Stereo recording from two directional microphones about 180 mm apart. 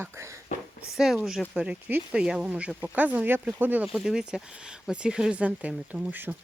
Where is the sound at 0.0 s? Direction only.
15° right (ahead or behind).